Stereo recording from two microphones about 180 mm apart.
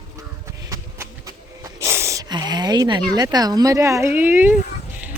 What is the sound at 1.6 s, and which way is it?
Speech, 15° right (ahead or behind).